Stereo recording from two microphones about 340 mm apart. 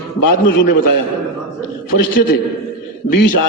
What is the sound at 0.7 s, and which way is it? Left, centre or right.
Speech, left.